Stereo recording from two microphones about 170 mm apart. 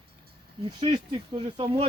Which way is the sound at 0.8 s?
30° right (ahead or behind).